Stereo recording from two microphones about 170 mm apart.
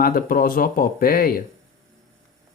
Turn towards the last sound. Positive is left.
turn(degrees=60)  # may be behind; listen again after turning